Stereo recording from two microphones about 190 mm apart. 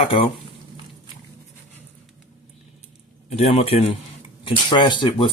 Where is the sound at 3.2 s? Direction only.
35° left (ahead or behind).